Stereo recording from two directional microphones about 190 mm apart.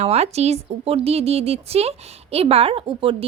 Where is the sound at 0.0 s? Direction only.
35° right (ahead or behind).